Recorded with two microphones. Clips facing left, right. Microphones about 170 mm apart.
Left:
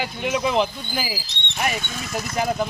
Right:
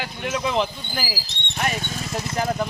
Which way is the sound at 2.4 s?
5° left (ahead or behind).